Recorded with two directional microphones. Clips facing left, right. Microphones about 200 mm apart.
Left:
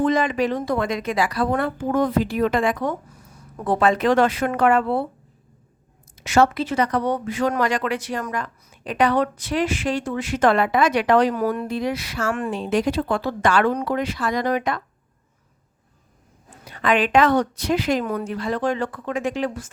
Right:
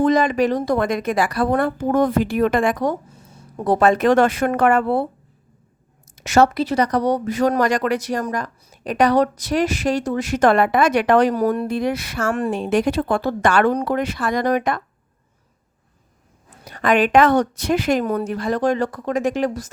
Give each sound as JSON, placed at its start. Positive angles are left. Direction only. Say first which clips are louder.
{"t": 0.0, "sound": "a woman's voice", "louder": "right 3 dB", "side_deg": -40}
{"t": 3.1, "sound": "a sound", "louder": "right 2 dB", "side_deg": -25}
{"t": 3.7, "sound": "a woman's voice", "louder": "right 3 dB", "side_deg": -45}
{"t": 6.1, "sound": "speech", "louder": "right 2 dB", "side_deg": -45}
{"t": 11.3, "sound": "speech", "louder": "right 4 dB", "side_deg": -35}
{"t": 11.7, "sound": "a woman's voice", "louder": "right 3 dB", "side_deg": -55}
{"t": 12.3, "sound": "a woman's voice", "louder": "right 3 dB", "side_deg": -40}
{"t": 16.6, "sound": "a woman's voice", "louder": "right 3 dB", "side_deg": -45}
{"t": 18.0, "sound": "speech", "louder": "right 4 dB", "side_deg": -35}